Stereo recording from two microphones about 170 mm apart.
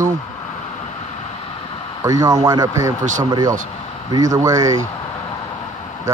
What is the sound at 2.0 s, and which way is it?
Speech, 20° right (ahead or behind).